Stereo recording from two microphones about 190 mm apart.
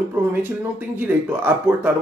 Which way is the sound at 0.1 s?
10° right (ahead or behind).